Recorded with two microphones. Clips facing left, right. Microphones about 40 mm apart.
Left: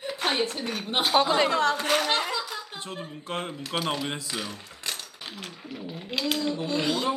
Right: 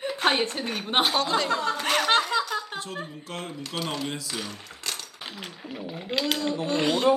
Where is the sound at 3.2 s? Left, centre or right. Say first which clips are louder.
Left 3 dB; left.